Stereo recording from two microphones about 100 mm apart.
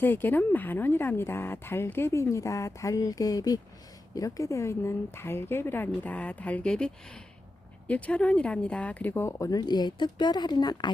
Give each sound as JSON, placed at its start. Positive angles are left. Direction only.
{"t": 0.0, "sound": "a woman's voice", "side_deg": 20}